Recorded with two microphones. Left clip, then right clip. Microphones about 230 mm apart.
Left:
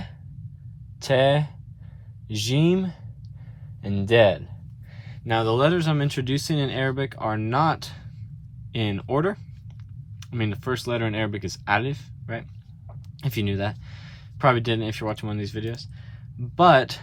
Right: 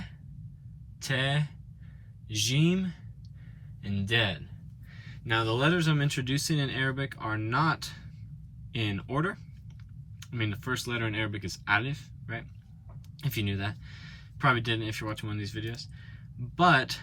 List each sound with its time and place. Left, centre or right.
1.2 s speech: centre